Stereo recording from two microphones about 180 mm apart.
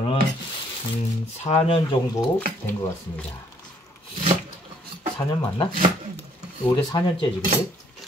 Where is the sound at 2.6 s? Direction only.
15° left (ahead or behind).